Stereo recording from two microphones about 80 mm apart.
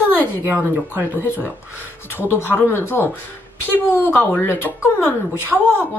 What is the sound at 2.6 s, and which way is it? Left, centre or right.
Speech, left.